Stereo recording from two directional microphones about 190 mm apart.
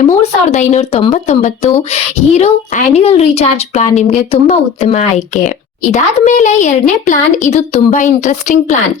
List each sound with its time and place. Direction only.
0.0 s speech: 35° left (ahead or behind)